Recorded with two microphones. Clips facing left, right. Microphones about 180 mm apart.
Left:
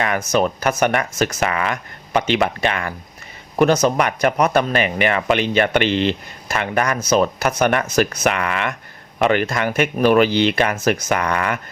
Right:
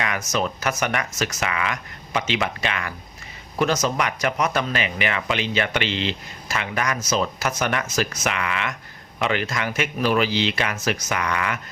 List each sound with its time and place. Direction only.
0.3 s speech: 55° left (ahead or behind)
3.6 s speech: 55° left (ahead or behind)